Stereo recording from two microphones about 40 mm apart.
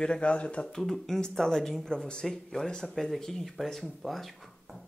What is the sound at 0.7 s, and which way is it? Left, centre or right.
Speech, centre.